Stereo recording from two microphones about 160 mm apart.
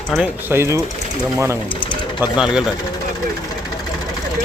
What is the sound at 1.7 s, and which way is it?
Sewing machine, 30° left (ahead or behind).